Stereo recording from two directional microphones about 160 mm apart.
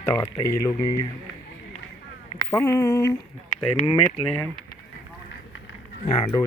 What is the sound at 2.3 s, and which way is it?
Speech, 15° left (ahead or behind).